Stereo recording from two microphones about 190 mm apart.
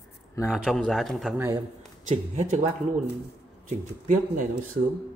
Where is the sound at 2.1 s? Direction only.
40° right (ahead or behind).